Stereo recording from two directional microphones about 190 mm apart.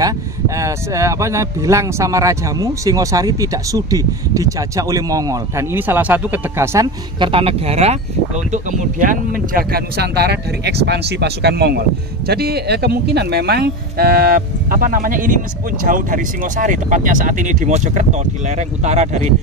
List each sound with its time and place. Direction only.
0.6 s speech: 15° right (ahead or behind)
7.2 s speech: 30° right (ahead or behind)